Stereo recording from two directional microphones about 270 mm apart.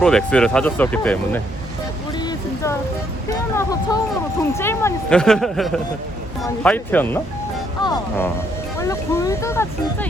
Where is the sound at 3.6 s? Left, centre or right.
Centre.